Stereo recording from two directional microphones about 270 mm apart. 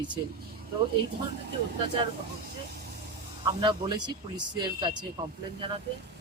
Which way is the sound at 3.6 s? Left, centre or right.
Centre.